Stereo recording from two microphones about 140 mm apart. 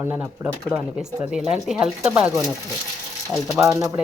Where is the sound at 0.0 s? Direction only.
15° right (ahead or behind).